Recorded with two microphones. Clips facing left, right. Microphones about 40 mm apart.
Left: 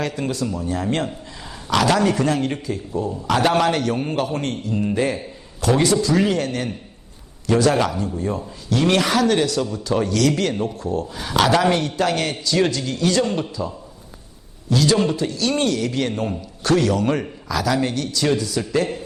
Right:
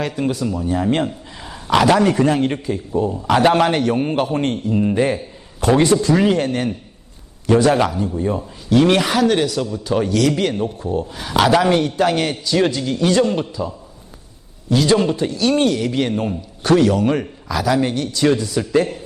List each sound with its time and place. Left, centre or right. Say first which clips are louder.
0.0 s a man's voice: right 3 dB; centre
5.5 s a man's voice: right 3 dB; right
6.1 s a man's voice: right 3 dB; centre
11.1 s a man's voice: right 3 dB; centre